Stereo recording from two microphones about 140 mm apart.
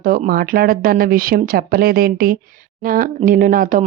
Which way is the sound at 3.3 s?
75° right (ahead or behind).